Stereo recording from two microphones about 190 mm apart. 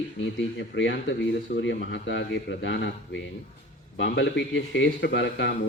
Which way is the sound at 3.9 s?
80° left.